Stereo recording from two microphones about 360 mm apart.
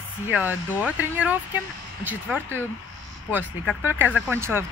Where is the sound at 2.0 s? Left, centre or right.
Centre.